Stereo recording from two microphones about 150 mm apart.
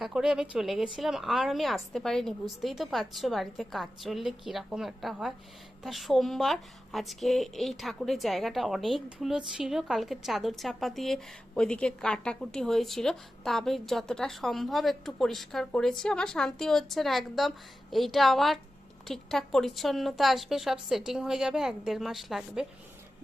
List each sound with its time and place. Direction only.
0.0 s a woman's voice: 5° right (ahead or behind)